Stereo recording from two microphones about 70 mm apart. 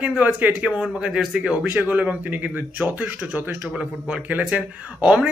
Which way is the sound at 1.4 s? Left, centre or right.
Centre.